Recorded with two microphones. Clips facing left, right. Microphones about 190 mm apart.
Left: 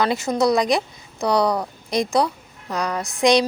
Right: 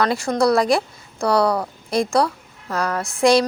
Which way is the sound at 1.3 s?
Centre (ahead or behind).